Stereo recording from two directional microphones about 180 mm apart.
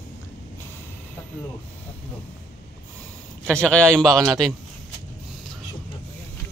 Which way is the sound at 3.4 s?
5° left (ahead or behind).